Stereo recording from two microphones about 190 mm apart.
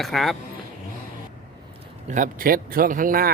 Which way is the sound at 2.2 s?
50° right (ahead or behind).